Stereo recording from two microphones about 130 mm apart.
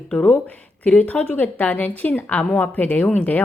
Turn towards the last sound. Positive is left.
turn(degrees=15)  # may be behind; listen again after turning